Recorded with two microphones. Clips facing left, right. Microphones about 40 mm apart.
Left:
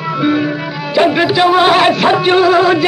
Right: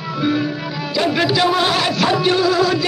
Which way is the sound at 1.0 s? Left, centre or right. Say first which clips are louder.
Left 4 dB; left.